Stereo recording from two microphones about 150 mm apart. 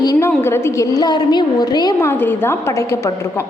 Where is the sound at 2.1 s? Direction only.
15° left (ahead or behind).